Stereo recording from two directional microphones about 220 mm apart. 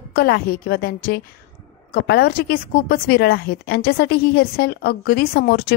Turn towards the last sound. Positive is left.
turn(degrees=45)  # may be behind; listen again after turning